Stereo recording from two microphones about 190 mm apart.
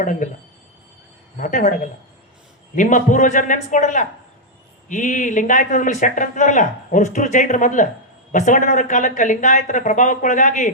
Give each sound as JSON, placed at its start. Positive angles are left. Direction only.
{"t": 0.0, "sound": "speech", "side_deg": 45}
{"t": 1.4, "sound": "speech", "side_deg": 40}